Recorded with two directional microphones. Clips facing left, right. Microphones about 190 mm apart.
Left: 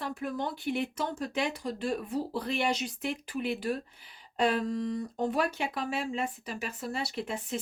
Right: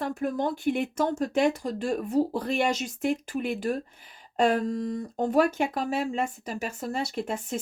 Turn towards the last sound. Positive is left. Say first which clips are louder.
# right 4 dB
turn(degrees=-45)  # may be behind; listen again after turning